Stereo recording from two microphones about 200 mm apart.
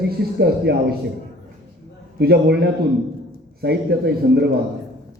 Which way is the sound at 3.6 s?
55° right (ahead or behind).